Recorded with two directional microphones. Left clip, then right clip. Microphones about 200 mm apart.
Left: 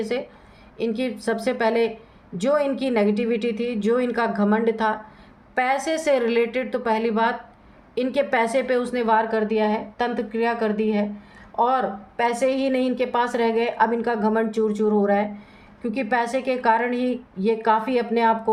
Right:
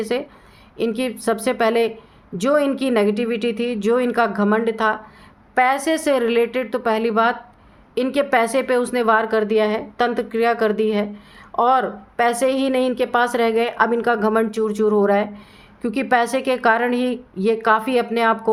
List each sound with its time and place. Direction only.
0.1 s a woman's voice: 35° right (ahead or behind)